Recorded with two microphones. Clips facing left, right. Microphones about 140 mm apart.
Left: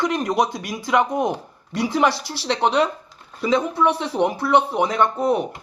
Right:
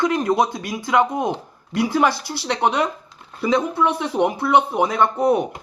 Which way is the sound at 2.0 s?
15° right (ahead or behind).